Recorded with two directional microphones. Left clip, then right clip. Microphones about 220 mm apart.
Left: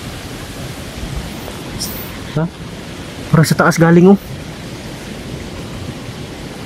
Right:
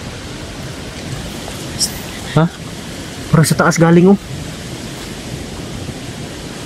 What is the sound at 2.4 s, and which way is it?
Speech, 25° right (ahead or behind).